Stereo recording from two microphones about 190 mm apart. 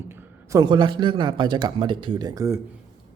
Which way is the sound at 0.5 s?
25° right (ahead or behind).